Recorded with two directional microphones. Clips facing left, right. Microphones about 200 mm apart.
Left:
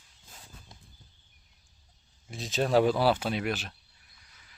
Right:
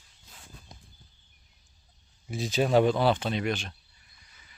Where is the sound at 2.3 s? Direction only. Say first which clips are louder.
Right 2 dB; centre (ahead or behind).